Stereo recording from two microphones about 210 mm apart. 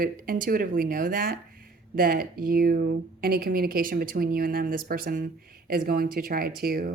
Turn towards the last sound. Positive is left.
turn(degrees=-45)  # may be behind; listen again after turning